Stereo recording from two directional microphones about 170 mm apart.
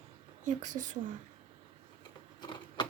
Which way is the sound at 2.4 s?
25° left (ahead or behind).